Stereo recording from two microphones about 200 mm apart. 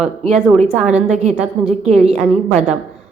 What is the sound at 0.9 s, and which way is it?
A woman's voice, 35° right (ahead or behind).